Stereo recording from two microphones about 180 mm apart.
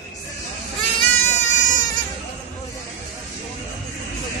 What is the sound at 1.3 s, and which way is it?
Baby cry, 40° left (ahead or behind).